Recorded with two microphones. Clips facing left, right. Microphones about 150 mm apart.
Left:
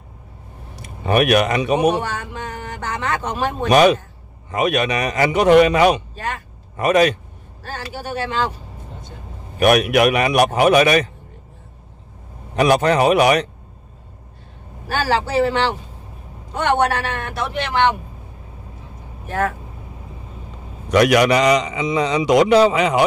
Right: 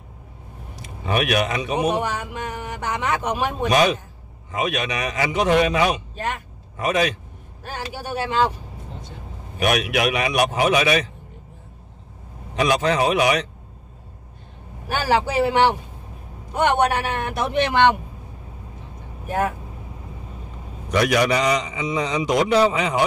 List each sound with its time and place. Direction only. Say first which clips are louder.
0.7 s speech: left 6 dB; 55° left (ahead or behind)
2.0 s speech: even; 15° right (ahead or behind)
3.6 s speech: left 6 dB; 60° left (ahead or behind)
6.1 s speech: even; 20° right (ahead or behind)
6.8 s speech: left 6 dB; 60° left (ahead or behind)
7.6 s speech: left 1 dB; 15° right (ahead or behind)
9.6 s speech: left 7 dB; 55° left (ahead or behind)
12.5 s speech: left 4 dB; 55° left (ahead or behind)
14.9 s speech: left 1 dB; 15° right (ahead or behind)
19.2 s speech: left 1 dB; 15° right (ahead or behind)
20.9 s a man's voice: left 5 dB; 75° left (ahead or behind)